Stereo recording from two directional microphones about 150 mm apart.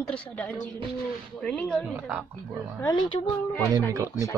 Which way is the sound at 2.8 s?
25° left (ahead or behind).